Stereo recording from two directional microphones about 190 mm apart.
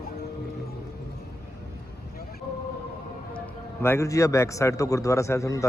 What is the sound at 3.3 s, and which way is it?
A man's voice, 10° left (ahead or behind).